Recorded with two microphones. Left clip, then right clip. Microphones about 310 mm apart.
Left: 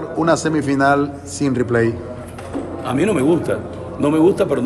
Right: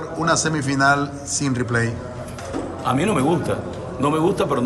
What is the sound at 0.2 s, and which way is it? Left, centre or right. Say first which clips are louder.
A man's voice: left 4 dB; centre.